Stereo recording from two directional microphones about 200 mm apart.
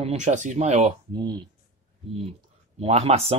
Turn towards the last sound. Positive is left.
turn(degrees=-30)  # may be behind; listen again after turning